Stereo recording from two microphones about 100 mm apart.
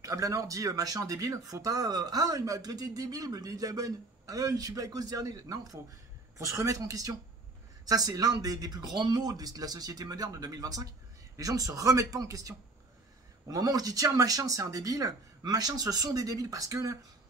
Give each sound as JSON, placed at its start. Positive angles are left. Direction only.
{"t": 0.0, "sound": "speech", "side_deg": -35}